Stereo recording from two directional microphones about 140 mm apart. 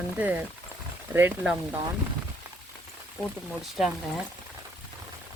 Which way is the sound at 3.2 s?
Centre (ahead or behind).